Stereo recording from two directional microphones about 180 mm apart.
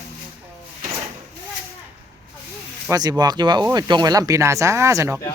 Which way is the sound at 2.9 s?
20° right (ahead or behind).